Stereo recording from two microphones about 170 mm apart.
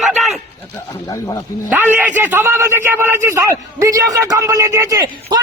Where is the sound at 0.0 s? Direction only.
Centre (ahead or behind).